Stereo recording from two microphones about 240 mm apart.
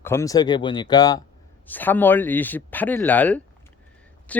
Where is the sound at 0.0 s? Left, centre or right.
Centre.